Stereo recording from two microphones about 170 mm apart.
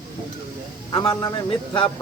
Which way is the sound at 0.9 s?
25° left (ahead or behind).